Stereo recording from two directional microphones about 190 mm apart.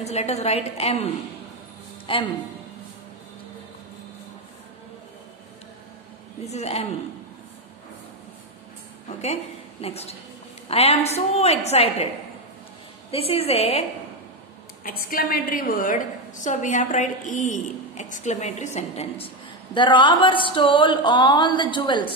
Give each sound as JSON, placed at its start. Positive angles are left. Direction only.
{"t": 0.0, "sound": "a woman's voice", "side_deg": 35}
{"t": 6.4, "sound": "a woman's voice", "side_deg": 35}
{"t": 9.2, "sound": "a woman's voice", "side_deg": 35}
{"t": 13.3, "sound": "a woman's voice", "side_deg": 30}
{"t": 14.8, "sound": "a woman's voice", "side_deg": 50}